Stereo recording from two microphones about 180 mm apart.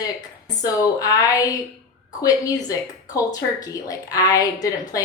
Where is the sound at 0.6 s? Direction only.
20° left (ahead or behind).